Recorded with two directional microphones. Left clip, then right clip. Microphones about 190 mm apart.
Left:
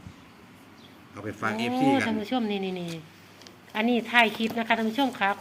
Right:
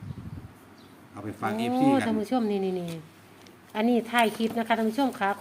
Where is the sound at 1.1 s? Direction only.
30° right (ahead or behind).